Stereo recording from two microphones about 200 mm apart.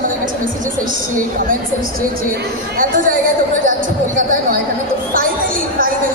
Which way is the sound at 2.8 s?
40° right (ahead or behind).